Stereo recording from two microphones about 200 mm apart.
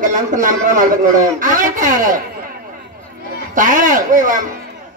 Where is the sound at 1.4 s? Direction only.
40° right (ahead or behind).